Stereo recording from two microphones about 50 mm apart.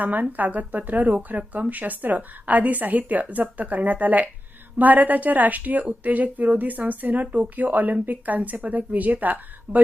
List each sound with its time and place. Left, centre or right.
0.0 s speech: right